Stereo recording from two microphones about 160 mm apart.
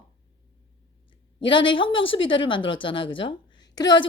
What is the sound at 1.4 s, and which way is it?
Speech, 30° left (ahead or behind).